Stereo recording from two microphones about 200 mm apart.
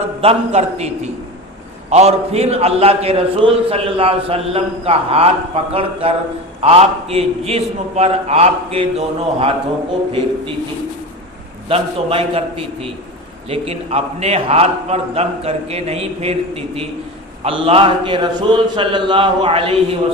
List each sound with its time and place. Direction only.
0.2 s a man's voice: 30° right (ahead or behind)
1.9 s a man's voice: 30° right (ahead or behind)
11.7 s a man's voice: 30° right (ahead or behind)